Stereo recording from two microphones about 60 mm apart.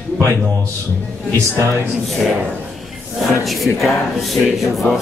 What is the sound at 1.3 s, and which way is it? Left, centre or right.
Speech, right.